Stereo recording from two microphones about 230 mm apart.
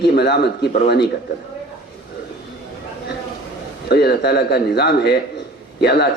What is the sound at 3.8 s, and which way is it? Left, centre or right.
A man's voice, left.